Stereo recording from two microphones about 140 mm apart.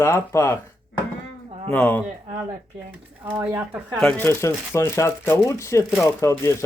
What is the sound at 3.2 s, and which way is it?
Speech, 15° right (ahead or behind).